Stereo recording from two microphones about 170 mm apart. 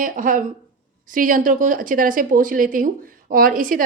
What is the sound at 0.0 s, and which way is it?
Speech, 55° right (ahead or behind).